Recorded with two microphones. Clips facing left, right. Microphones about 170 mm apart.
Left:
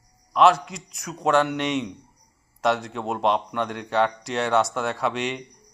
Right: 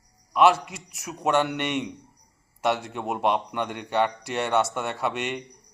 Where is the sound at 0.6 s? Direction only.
5° right (ahead or behind).